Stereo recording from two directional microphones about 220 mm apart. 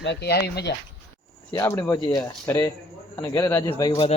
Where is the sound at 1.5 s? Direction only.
15° left (ahead or behind).